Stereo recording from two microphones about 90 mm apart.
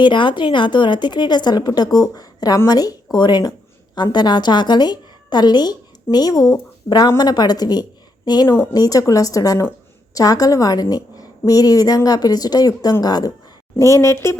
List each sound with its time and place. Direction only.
0.0 s a woman's voice: 60° left (ahead or behind)
13.7 s a woman's voice: 35° left (ahead or behind)